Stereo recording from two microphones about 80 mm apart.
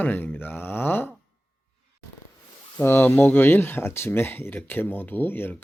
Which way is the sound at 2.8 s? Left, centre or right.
Left.